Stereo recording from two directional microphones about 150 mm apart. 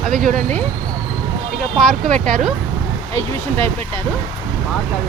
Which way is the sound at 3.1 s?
15° left (ahead or behind).